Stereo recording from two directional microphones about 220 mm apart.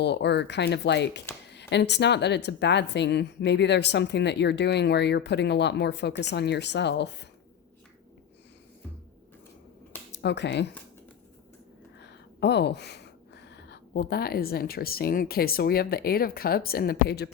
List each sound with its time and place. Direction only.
0.0 s a woman's voice: 50° left (ahead or behind)
10.1 s speech: 50° left (ahead or behind)
11.9 s speech: 50° left (ahead or behind)